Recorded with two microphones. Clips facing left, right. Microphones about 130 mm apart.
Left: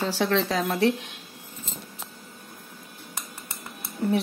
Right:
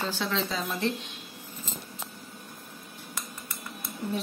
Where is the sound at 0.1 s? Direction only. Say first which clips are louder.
Left 6 dB; 75° left (ahead or behind).